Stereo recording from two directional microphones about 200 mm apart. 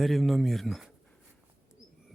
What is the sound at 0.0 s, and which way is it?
Speech, centre (ahead or behind).